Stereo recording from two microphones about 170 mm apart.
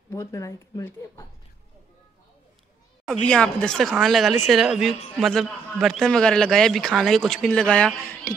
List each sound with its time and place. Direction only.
0.1 s speech: 15° left (ahead or behind)
3.1 s a man's voice: 5° left (ahead or behind)